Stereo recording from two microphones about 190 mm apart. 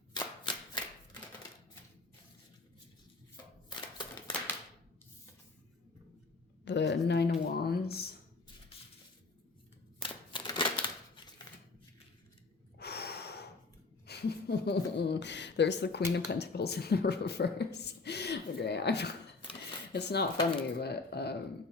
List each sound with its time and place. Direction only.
0.1 s shuffling cards: 25° left (ahead or behind)
4.3 s typewriter: 25° left (ahead or behind)
6.7 s speech: 65° left (ahead or behind)
10.0 s a sound: 25° left (ahead or behind)
12.8 s gasp: 60° left (ahead or behind)
14.1 s speech: 60° left (ahead or behind)